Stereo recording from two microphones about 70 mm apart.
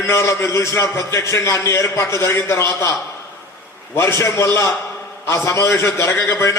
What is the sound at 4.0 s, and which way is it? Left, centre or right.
A man's voice, left.